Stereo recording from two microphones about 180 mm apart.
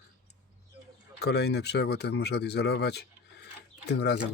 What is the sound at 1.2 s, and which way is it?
Speech, 65° left (ahead or behind).